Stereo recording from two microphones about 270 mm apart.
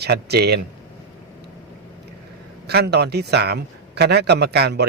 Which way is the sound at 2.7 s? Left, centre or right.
Right.